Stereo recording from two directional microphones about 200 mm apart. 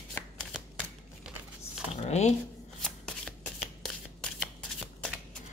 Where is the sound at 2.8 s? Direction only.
5° left (ahead or behind).